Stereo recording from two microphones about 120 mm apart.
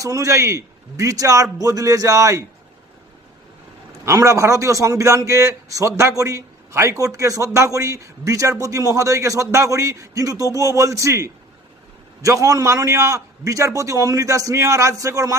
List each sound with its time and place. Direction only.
0.0 s a man's voice: 25° right (ahead or behind)
4.0 s a man's voice: 25° right (ahead or behind)